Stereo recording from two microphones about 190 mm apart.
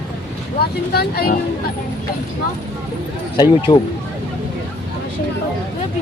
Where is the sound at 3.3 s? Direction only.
20° left (ahead or behind).